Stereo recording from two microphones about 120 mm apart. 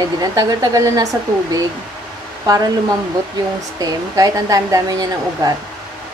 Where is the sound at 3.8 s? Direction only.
30° right (ahead or behind).